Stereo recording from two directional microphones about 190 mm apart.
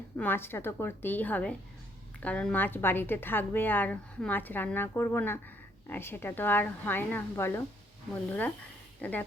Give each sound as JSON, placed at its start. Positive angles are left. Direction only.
{"t": 0.2, "sound": "a woman's voice", "side_deg": 10}